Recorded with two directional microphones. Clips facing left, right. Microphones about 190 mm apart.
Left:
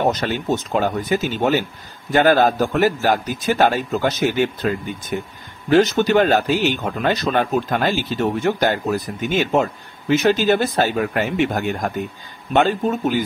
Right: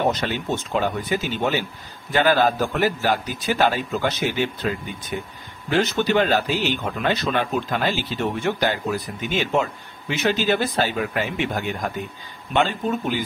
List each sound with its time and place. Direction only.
0.1 s a man's voice: 45° left (ahead or behind)
5.7 s a man's voice: 40° left (ahead or behind)